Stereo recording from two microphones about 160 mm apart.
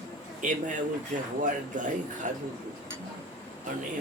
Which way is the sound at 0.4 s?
55° right (ahead or behind).